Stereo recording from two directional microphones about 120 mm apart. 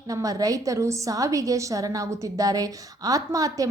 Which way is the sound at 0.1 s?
30° right (ahead or behind).